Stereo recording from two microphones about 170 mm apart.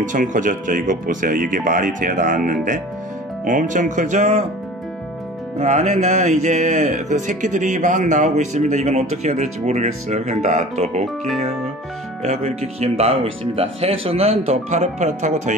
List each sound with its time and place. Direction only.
0.0 s speech: 50° right (ahead or behind)
5.6 s speech: 45° right (ahead or behind)
12.2 s speech: 40° right (ahead or behind)